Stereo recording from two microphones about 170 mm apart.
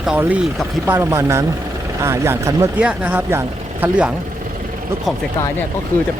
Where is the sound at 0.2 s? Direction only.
10° right (ahead or behind).